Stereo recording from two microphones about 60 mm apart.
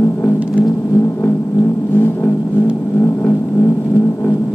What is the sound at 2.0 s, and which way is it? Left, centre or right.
Vehicle, left.